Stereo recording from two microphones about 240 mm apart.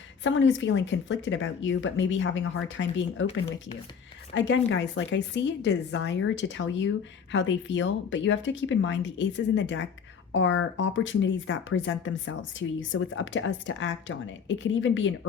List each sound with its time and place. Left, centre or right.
0.3 s speech: left
4.4 s speech: left